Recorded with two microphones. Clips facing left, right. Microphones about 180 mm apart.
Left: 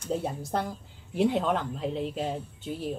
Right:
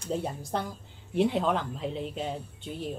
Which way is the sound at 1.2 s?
Centre (ahead or behind).